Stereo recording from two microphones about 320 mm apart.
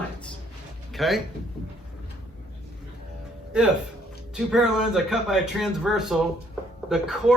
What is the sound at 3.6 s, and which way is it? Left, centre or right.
Speech, centre.